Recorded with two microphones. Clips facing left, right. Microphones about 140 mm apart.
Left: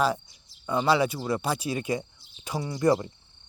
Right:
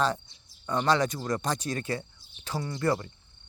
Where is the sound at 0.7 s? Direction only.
10° left (ahead or behind).